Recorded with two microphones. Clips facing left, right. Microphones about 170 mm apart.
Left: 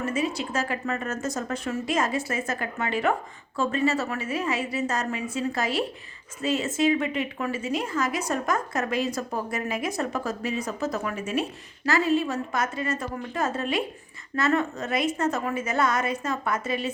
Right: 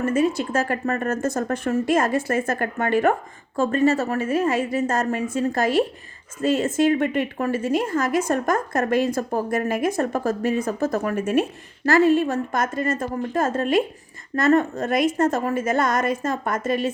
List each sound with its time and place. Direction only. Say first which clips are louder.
0.0 s a woman's voice: right 7 dB; 50° right (ahead or behind)